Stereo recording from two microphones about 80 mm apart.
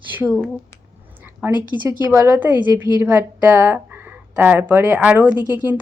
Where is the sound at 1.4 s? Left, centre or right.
Right.